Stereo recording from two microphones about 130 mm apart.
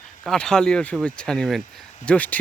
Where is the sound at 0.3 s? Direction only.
5° left (ahead or behind).